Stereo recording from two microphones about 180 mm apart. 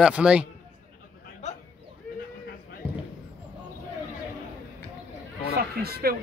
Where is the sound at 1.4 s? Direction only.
40° left (ahead or behind).